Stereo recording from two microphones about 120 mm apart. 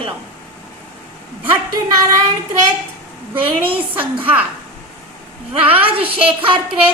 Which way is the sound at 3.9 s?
15° right (ahead or behind).